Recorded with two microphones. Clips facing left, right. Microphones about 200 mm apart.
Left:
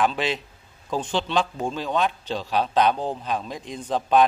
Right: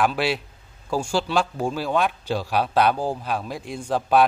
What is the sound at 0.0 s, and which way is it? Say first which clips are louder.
A man's voice: right 1 dB; 10° right (ahead or behind).